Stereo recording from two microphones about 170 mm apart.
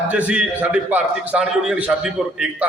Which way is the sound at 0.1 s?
5° right (ahead or behind).